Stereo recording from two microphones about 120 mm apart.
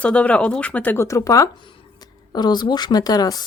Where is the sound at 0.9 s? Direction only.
25° left (ahead or behind).